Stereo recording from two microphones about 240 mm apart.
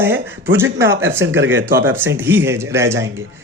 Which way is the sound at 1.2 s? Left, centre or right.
Right.